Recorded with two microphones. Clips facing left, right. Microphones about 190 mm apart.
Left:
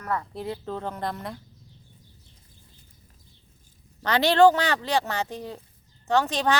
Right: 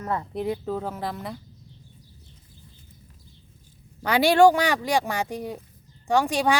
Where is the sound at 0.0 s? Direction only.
25° right (ahead or behind); by 1.4 s centre (ahead or behind).